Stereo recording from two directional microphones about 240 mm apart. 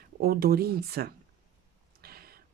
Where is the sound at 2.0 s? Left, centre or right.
Right.